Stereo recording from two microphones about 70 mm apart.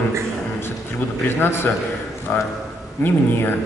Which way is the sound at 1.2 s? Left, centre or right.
Left.